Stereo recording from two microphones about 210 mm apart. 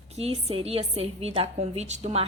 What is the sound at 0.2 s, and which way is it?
A woman's voice, 30° right (ahead or behind).